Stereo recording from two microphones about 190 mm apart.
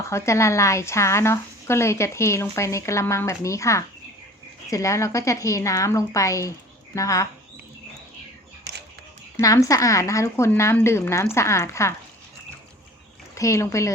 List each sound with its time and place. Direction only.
0.0 s speech: 15° left (ahead or behind)
9.4 s speech: 15° left (ahead or behind)
13.3 s speech: 15° left (ahead or behind)